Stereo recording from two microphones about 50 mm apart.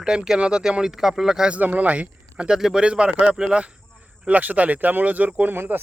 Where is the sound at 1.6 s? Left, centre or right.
Right.